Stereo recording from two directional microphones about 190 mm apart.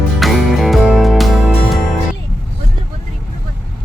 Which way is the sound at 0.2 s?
Centre (ahead or behind).